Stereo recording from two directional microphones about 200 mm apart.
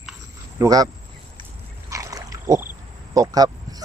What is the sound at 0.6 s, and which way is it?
Speech, 20° right (ahead or behind).